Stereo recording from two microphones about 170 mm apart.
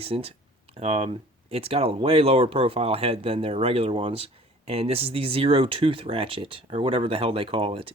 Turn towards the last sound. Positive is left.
turn(degrees=-35)  # may be behind; listen again after turning